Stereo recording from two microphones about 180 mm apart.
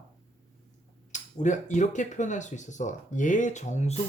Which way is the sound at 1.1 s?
40° left (ahead or behind).